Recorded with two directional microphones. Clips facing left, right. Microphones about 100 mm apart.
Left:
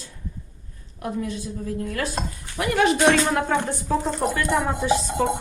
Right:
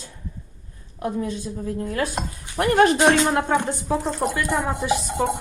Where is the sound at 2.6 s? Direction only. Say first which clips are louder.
Right 4 dB; 45° right (ahead or behind).